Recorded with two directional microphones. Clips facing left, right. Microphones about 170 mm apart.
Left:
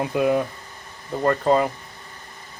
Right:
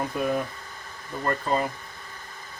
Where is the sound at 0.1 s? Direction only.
85° left.